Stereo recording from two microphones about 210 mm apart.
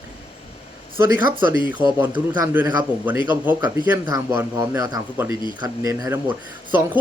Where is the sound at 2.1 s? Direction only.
20° right (ahead or behind).